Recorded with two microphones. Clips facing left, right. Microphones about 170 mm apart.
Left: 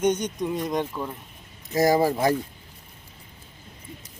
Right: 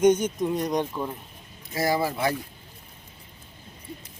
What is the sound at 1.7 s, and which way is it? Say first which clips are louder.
Speech: left 5 dB; 40° left (ahead or behind).